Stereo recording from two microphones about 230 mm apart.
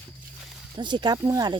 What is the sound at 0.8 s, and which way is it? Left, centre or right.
Speech, centre.